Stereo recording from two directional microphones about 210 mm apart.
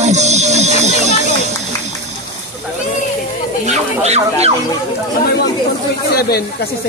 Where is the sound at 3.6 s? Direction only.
30° right (ahead or behind).